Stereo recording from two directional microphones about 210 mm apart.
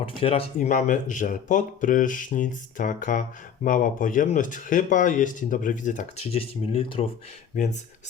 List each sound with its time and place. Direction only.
0.0 s speech: 25° left (ahead or behind)